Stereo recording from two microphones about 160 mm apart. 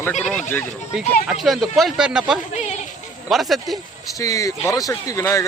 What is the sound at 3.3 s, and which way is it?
Speech, centre (ahead or behind).